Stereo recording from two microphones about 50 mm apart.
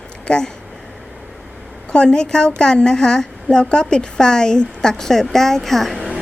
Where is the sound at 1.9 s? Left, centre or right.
Centre.